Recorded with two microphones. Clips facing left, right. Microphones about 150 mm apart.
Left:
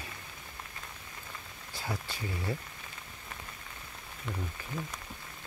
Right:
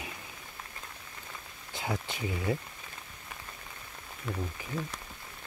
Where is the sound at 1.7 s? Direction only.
20° right (ahead or behind).